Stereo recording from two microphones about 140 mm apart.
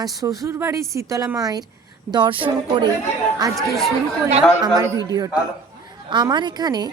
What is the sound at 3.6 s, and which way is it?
Speech, centre (ahead or behind).